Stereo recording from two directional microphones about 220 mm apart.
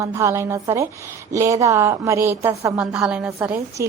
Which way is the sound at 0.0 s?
15° right (ahead or behind).